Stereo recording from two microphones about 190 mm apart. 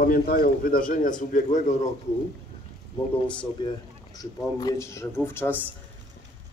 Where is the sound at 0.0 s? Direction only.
50° left (ahead or behind).